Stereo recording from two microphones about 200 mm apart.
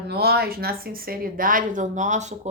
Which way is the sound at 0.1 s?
50° right (ahead or behind).